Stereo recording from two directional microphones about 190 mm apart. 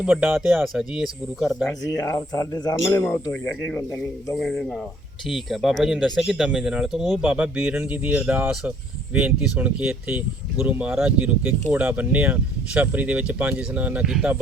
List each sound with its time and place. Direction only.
0.0 s speech: 5° right (ahead or behind)
2.0 s speech: 15° left (ahead or behind); by 14.3 s 5° right (ahead or behind)